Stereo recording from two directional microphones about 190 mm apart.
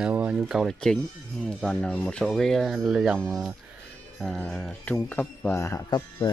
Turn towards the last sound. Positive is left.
turn(degrees=20)  # may be behind; listen again after turning